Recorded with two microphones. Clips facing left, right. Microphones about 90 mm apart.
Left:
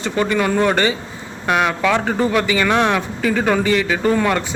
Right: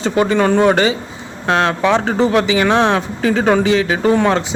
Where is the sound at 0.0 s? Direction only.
30° right (ahead or behind).